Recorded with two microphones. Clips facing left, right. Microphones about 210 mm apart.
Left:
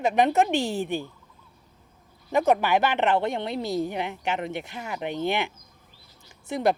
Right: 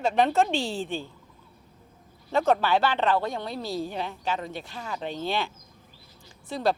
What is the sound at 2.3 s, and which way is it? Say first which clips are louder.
Speech: left 1 dB; 15° left (ahead or behind).